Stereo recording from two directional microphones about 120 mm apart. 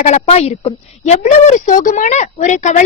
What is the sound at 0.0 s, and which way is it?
A woman's voice, 65° left (ahead or behind).